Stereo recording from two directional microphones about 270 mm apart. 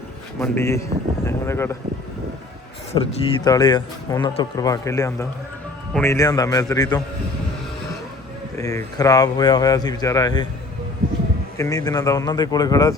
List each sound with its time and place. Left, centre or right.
0.3 s speech: centre
2.9 s speech: centre
8.5 s speech: centre
11.5 s speech: centre